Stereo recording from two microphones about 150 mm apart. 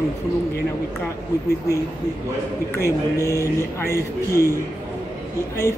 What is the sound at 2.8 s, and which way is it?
A man's voice, 20° left (ahead or behind).